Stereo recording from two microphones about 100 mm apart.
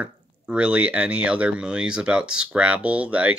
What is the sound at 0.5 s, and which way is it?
Speech, 10° right (ahead or behind).